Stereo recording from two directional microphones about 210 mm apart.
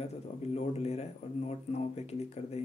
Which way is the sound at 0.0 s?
30° left (ahead or behind).